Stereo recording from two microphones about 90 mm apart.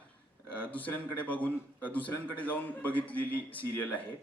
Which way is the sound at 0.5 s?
20° left (ahead or behind).